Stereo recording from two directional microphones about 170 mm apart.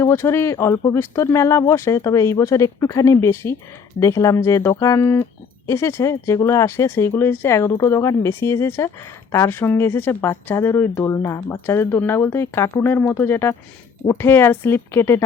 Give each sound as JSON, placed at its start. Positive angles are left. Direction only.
{"t": 0.0, "sound": "speech", "side_deg": 15}